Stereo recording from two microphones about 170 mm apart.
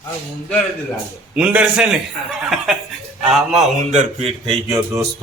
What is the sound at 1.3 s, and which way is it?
Speech, 5° right (ahead or behind).